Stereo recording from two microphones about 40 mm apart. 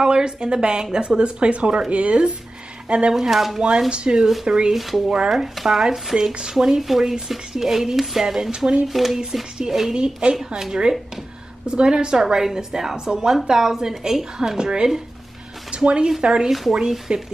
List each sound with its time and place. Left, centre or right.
0.0 s a woman's voice: right
3.2 s a woman's voice: centre
3.9 s a woman's voice: right
4.7 s a woman's voice: centre
8.5 s a woman's voice: right
8.8 s a woman's voice: centre
9.9 s a woman's voice: right
10.3 s a woman's voice: centre
14.6 s a woman's voice: centre